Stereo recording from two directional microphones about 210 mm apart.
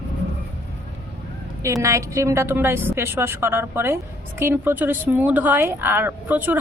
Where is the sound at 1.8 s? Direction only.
15° right (ahead or behind).